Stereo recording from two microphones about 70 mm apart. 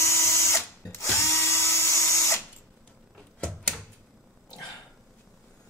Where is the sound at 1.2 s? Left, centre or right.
Left.